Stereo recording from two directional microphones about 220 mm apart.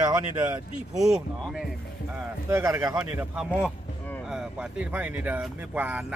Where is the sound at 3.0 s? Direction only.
5° right (ahead or behind).